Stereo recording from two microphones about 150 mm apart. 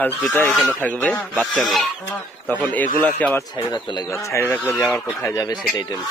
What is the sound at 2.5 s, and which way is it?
Speech, 10° left (ahead or behind).